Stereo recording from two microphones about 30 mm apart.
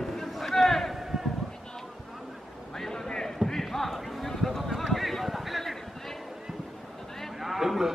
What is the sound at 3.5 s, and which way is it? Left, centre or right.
Basketball bounce, centre.